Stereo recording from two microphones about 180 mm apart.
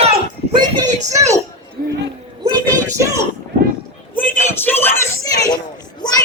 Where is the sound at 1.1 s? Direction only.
15° right (ahead or behind).